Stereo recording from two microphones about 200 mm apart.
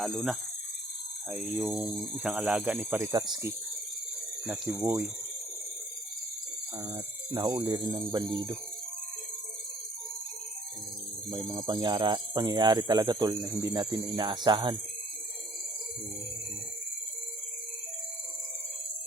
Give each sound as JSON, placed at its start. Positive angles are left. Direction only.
{"t": 0.0, "sound": "speech", "side_deg": 0}
{"t": 3.1, "sound": "speech", "side_deg": -20}
{"t": 4.4, "sound": "speech", "side_deg": 0}
{"t": 6.8, "sound": "speech", "side_deg": -20}
{"t": 11.3, "sound": "speech", "side_deg": -20}